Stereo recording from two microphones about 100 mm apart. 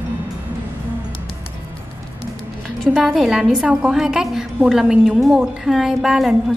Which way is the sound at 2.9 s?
Centre (ahead or behind).